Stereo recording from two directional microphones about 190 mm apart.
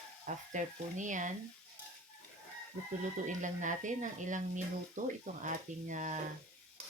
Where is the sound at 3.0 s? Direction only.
40° right (ahead or behind).